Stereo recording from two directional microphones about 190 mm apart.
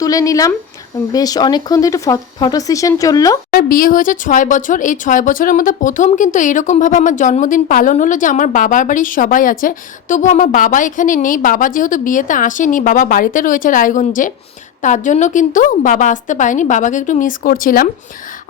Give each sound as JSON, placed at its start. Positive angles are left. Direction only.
{"t": 0.0, "sound": "speech", "side_deg": 20}
{"t": 3.5, "sound": "a woman's voice", "side_deg": 45}